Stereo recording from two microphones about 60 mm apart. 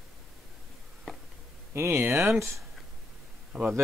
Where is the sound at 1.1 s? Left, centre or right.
Centre.